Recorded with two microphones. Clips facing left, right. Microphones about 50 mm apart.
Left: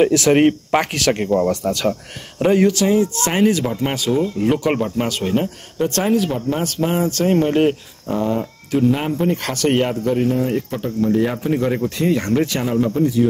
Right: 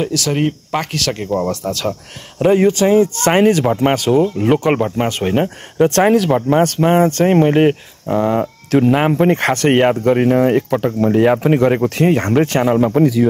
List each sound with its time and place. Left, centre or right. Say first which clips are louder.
0.0 s speech: left 5 dB; left
0.7 s speech: left 2 dB; centre
1.7 s speech: left 1 dB; centre
2.3 s speech: right 3 dB; centre
2.6 s speech: right 4 dB; right
3.3 s speech: right 5 dB; right
4.4 s speech: right 4 dB; right
6.1 s speech: right 5 dB; right
6.6 s speech: right 7 dB; right
8.3 s speech: right 5 dB; right
9.4 s speech: right 5 dB; right
10.9 s speech: right 4 dB; right
11.7 s speech: right 5 dB; right